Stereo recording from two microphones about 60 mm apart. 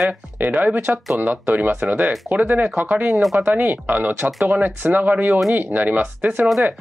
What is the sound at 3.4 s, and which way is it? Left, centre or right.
Speech, right.